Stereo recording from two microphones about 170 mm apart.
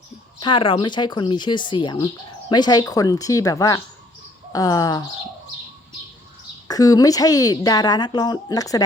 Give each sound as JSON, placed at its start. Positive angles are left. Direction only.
{"t": 0.3, "sound": "a woman's voice", "side_deg": 30}
{"t": 6.7, "sound": "a woman's voice", "side_deg": 20}